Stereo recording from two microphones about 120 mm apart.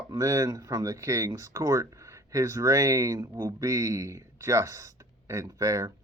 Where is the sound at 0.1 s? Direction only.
30° right (ahead or behind).